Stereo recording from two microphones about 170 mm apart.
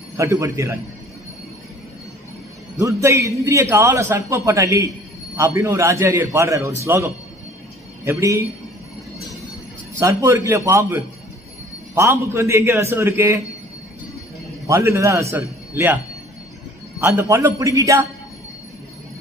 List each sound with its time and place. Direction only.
0.2 s a man's voice: 15° right (ahead or behind)
2.8 s a man's voice: 15° right (ahead or behind)
9.9 s a man's voice: 15° right (ahead or behind)
14.7 s a man's voice: 15° right (ahead or behind)
17.0 s a man's voice: 15° right (ahead or behind)